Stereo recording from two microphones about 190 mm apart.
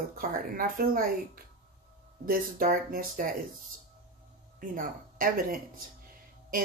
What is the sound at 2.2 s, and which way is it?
Speech, 50° right (ahead or behind).